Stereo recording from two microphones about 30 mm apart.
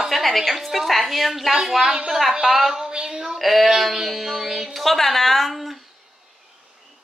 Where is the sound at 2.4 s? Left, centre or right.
Centre.